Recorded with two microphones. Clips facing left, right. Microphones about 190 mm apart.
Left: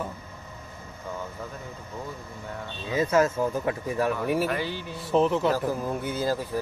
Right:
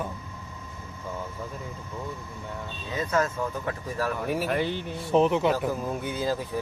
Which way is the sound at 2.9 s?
25° left (ahead or behind).